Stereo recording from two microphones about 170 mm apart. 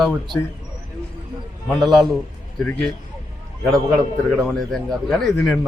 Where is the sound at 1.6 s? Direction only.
Centre (ahead or behind).